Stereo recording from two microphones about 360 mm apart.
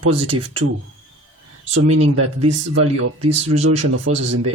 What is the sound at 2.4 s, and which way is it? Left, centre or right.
Speech, right.